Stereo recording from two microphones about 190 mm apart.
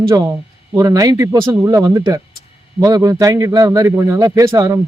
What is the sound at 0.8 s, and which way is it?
Speech, 20° right (ahead or behind).